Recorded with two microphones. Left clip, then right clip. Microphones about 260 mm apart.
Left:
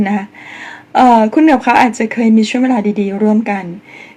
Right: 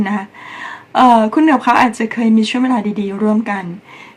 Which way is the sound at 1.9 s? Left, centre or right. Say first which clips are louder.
Left 3 dB; centre.